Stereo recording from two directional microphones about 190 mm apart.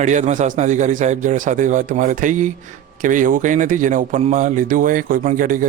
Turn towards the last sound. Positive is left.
turn(degrees=-45)  # may be behind; listen again after turning